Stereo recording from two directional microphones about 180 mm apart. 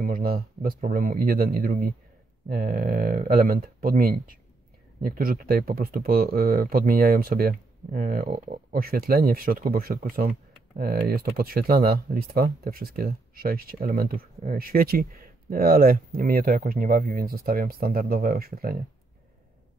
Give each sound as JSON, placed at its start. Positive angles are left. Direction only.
{"t": 0.0, "sound": "speech", "side_deg": -55}